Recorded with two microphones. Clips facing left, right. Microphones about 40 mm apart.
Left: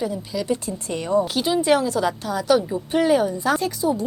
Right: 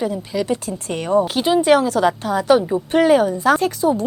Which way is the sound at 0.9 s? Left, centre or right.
Right.